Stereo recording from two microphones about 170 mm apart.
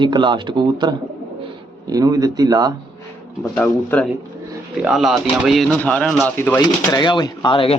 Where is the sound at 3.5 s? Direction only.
10° left (ahead or behind).